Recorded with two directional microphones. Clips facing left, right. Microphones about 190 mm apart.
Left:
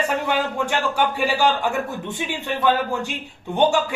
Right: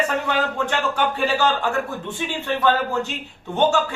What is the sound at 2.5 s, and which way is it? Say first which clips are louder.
Speech: even; 15° left (ahead or behind).